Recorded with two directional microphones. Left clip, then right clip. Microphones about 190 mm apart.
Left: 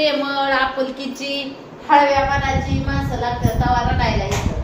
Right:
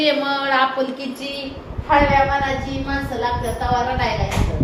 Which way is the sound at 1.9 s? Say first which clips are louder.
Left 2 dB; 65° left (ahead or behind).